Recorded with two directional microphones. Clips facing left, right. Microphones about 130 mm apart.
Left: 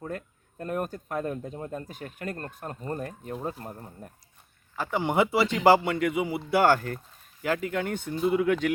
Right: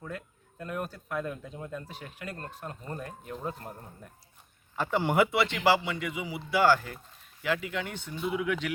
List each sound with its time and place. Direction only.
0.6 s speech: 45° left (ahead or behind)
4.8 s speech: 15° left (ahead or behind)
5.1 s speech: 30° left (ahead or behind)
5.6 s speech: 50° left (ahead or behind)